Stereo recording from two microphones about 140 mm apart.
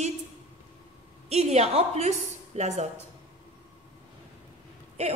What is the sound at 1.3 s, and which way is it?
A woman's voice, 50° right (ahead or behind).